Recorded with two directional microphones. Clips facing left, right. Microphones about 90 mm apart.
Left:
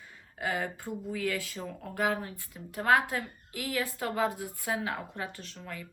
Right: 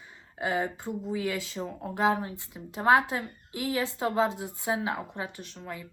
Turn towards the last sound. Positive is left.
turn(degrees=-20)  # may be behind; listen again after turning